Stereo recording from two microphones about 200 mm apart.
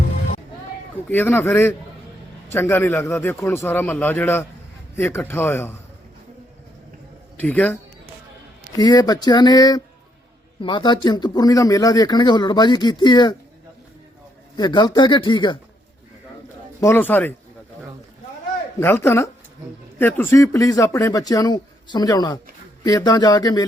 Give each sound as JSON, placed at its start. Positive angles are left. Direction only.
{"t": 1.0, "sound": "speech", "side_deg": 10}
{"t": 7.3, "sound": "a man's voice", "side_deg": 5}
{"t": 8.7, "sound": "speech", "side_deg": 20}
{"t": 14.5, "sound": "speech", "side_deg": 20}
{"t": 16.8, "sound": "speech", "side_deg": 10}
{"t": 18.8, "sound": "speech", "side_deg": 10}